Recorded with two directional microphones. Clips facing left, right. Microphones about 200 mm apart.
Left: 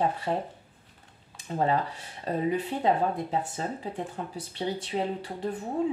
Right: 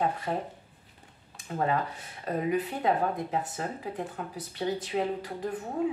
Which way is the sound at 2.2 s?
30° left (ahead or behind).